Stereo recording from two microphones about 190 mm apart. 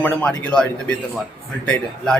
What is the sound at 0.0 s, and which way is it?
A man's voice, 5° left (ahead or behind).